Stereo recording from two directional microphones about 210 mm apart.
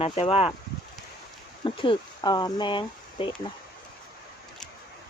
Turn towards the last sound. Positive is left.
turn(degrees=20)  # may be behind; listen again after turning